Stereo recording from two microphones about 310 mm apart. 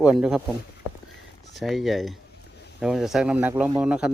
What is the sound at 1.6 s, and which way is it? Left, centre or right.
Speech, centre.